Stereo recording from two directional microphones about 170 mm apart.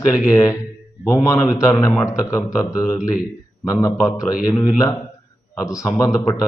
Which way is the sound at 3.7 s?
20° left (ahead or behind).